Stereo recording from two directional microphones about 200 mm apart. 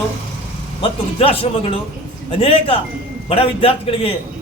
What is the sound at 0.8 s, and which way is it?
A man's voice, 30° left (ahead or behind).